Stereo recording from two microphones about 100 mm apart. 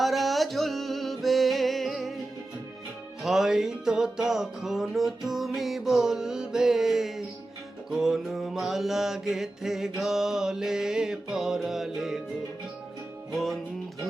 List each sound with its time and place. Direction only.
0.0 s music: centre (ahead or behind)
3.2 s music: 5° right (ahead or behind)
13.3 s music: centre (ahead or behind)